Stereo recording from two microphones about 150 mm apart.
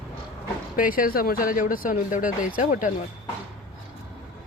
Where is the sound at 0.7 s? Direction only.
70° left (ahead or behind).